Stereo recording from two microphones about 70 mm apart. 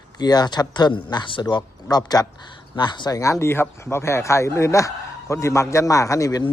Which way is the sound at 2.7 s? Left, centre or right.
Left.